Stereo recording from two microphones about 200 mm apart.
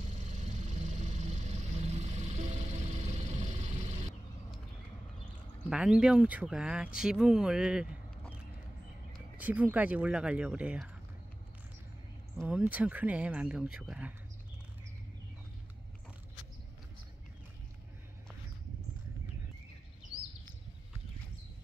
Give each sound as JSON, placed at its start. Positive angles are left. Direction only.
{"t": 0.5, "sound": "vehicle", "side_deg": -35}
{"t": 5.7, "sound": "speech", "side_deg": -5}
{"t": 9.1, "sound": "speech", "side_deg": -5}
{"t": 12.4, "sound": "speech", "side_deg": -5}